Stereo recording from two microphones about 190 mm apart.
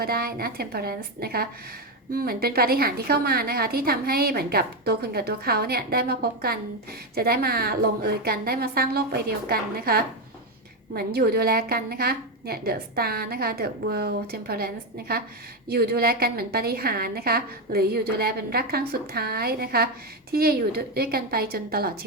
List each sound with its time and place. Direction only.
0.0 s a woman's voice: 55° right (ahead or behind)